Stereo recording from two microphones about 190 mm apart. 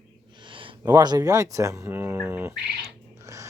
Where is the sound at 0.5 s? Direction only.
25° right (ahead or behind); by 2.9 s 5° right (ahead or behind).